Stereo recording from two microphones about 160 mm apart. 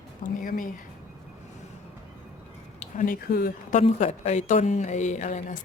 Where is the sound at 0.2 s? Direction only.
60° left (ahead or behind).